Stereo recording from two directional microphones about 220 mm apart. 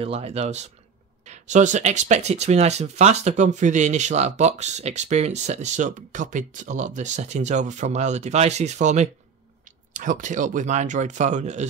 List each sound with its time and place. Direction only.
0.0 s speech: 25° right (ahead or behind)